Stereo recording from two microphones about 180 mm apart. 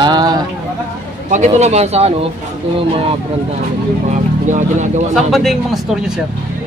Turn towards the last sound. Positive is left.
turn(degrees=0)  # may be behind; listen again after turning